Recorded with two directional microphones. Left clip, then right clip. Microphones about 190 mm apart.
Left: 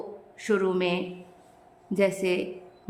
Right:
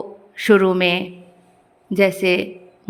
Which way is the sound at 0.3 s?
35° right (ahead or behind).